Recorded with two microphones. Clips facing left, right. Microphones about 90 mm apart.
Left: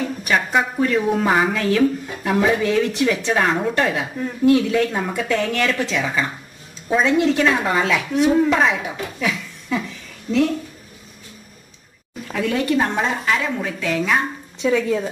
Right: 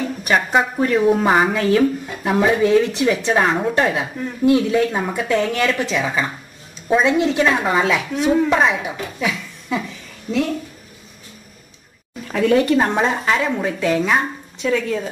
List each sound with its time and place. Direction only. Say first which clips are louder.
0.0 s a sound: right 2 dB; 25° right (ahead or behind)
0.9 s speech: right 6 dB; 5° right (ahead or behind)
1.2 s speech: right 2 dB; 20° right (ahead or behind); by 8.5 s centre (ahead or behind)
8.5 s a woman's voice: right 1 dB; 10° right (ahead or behind)
10.3 s speech: left 2 dB; centre (ahead or behind)
12.4 s a woman's voice: right 5 dB; 35° right (ahead or behind)
14.6 s speech: left 1 dB; 5° left (ahead or behind)